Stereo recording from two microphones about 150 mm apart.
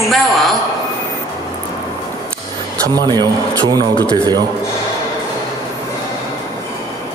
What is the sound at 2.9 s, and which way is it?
Speech, 25° right (ahead or behind).